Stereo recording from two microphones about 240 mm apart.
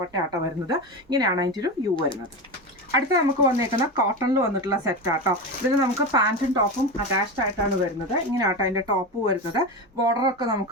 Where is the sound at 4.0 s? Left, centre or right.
Centre.